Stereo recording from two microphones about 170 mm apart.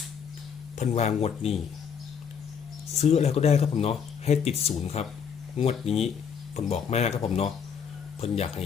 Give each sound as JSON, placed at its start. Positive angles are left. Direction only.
{"t": 0.8, "sound": "speech", "side_deg": 40}
{"t": 2.9, "sound": "speech", "side_deg": 40}